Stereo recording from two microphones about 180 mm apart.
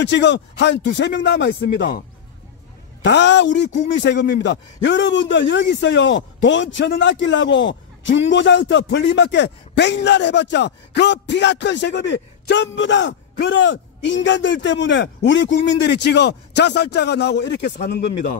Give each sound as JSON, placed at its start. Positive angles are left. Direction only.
{"t": 0.0, "sound": "a man's voice", "side_deg": 75}
{"t": 1.8, "sound": "speech", "side_deg": 50}
{"t": 3.0, "sound": "a man's voice", "side_deg": 75}
{"t": 15.8, "sound": "a man's voice", "side_deg": 70}